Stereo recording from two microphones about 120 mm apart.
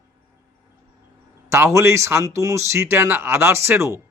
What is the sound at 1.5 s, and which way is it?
Speech, 25° right (ahead or behind).